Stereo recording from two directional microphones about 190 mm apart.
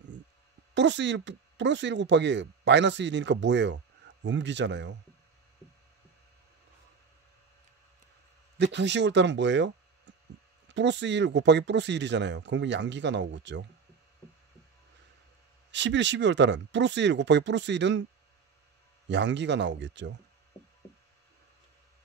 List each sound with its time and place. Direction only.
0.7 s speech: 70° right (ahead or behind)
8.5 s speech: 65° right (ahead or behind)
15.7 s speech: 70° right (ahead or behind)
19.0 s speech: 70° right (ahead or behind)